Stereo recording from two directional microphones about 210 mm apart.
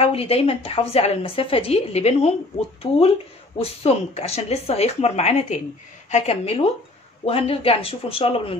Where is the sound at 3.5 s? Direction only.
30° left (ahead or behind).